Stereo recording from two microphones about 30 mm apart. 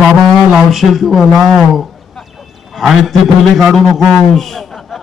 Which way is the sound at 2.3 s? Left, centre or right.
Centre.